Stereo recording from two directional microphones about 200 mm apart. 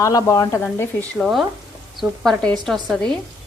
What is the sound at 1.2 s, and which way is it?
A woman's voice, centre (ahead or behind).